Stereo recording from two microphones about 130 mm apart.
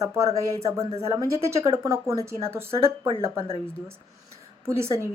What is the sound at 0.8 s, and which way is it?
Speech, 50° right (ahead or behind).